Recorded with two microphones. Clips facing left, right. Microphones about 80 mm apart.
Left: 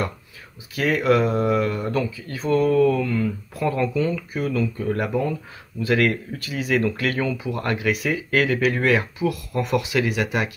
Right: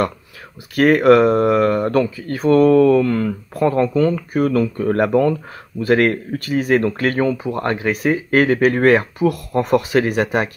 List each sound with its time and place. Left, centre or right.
0.7 s speech: right
5.8 s speech: right